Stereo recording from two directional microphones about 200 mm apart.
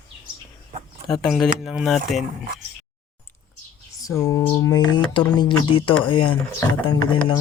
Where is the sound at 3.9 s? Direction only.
15° left (ahead or behind).